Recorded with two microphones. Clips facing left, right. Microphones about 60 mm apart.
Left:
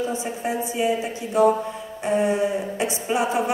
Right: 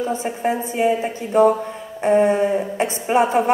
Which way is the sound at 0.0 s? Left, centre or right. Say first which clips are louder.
Right 4 dB; right.